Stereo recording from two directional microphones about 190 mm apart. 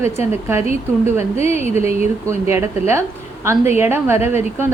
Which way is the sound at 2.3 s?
15° right (ahead or behind).